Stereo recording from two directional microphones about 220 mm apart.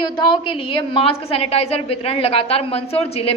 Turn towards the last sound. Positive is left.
turn(degrees=25)  # may be behind; listen again after turning